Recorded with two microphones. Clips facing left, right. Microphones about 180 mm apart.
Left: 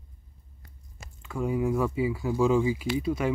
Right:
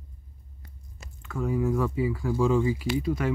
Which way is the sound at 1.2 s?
20° left (ahead or behind).